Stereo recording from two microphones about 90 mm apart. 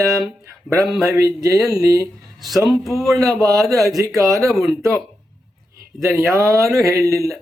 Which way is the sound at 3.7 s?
40° right (ahead or behind).